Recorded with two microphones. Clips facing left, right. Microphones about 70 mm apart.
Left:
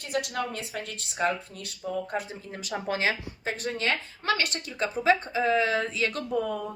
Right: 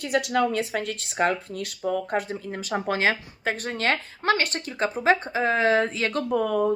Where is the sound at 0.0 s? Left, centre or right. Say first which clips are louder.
Right 7 dB; right.